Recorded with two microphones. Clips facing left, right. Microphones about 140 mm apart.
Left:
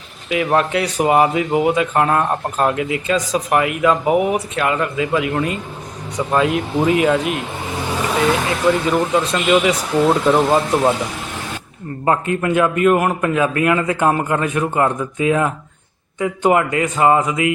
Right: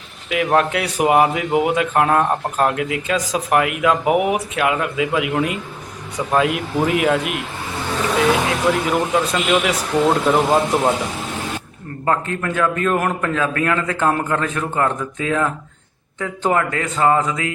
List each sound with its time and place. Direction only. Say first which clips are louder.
0.3 s speech: even; centre (ahead or behind)
7.9 s speech: even; 10° left (ahead or behind)
12.0 s a man's voice: left 3 dB; 15° left (ahead or behind)